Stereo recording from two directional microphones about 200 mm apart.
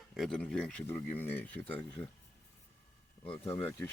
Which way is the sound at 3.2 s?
25° left (ahead or behind).